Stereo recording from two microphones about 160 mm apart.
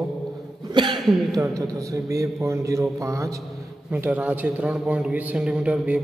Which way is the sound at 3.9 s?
10° right (ahead or behind).